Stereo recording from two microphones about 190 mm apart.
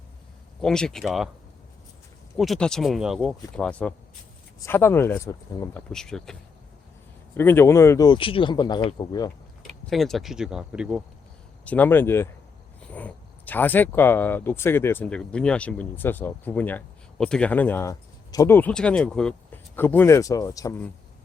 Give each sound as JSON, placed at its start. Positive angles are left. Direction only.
{"t": 0.6, "sound": "speech", "side_deg": 5}
{"t": 2.4, "sound": "speech", "side_deg": 0}
{"t": 5.9, "sound": "speech", "side_deg": 5}
{"t": 7.3, "sound": "speech", "side_deg": 10}
{"t": 9.9, "sound": "speech", "side_deg": 0}
{"t": 11.6, "sound": "speech", "side_deg": 10}